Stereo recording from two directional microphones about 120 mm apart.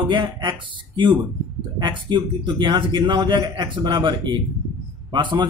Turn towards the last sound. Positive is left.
turn(degrees=-40)  # may be behind; listen again after turning